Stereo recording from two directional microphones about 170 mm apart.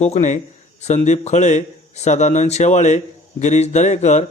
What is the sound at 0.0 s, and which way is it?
Speech, 45° left (ahead or behind).